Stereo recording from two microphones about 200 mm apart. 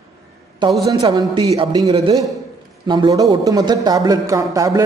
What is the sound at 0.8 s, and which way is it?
A man's voice, 20° right (ahead or behind).